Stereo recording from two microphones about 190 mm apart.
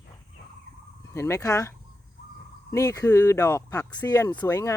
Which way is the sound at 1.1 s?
15° left (ahead or behind).